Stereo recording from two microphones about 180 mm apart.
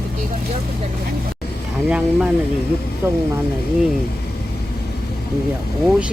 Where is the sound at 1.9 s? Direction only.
5° right (ahead or behind).